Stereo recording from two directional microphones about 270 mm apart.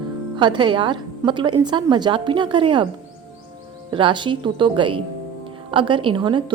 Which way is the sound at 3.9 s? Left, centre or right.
Centre.